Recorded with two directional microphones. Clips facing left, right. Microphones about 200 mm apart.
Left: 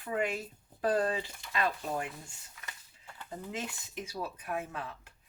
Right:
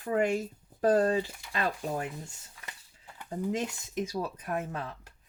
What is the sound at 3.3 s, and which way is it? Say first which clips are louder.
Speech: right 8 dB; 40° right (ahead or behind).